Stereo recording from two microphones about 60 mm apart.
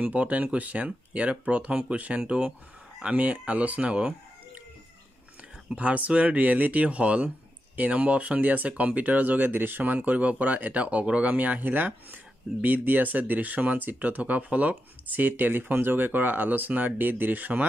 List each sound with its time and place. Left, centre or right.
0.0 s speech: right
5.8 s speech: right
9.9 s speech: right